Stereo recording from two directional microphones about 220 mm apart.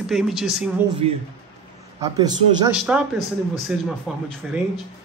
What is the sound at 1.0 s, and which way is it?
Speech, 30° right (ahead or behind).